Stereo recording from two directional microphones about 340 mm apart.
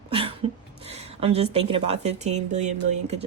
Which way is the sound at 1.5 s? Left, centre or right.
Centre.